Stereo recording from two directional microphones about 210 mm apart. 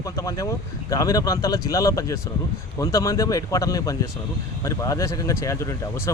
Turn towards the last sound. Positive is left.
turn(degrees=15)  # may be behind; listen again after turning